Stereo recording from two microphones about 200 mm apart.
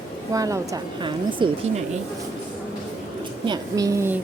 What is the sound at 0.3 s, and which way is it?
Speech, 15° right (ahead or behind).